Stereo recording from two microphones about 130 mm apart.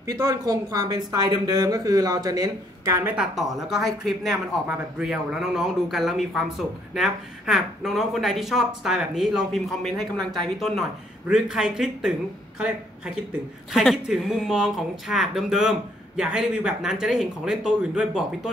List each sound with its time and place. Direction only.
0.0 s speech: 25° right (ahead or behind)
3.7 s speech: centre (ahead or behind)